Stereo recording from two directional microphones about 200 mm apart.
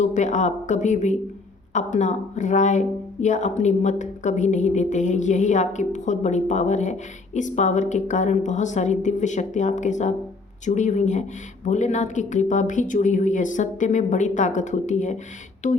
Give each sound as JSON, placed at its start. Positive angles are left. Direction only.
{"t": 0.0, "sound": "speech", "side_deg": 35}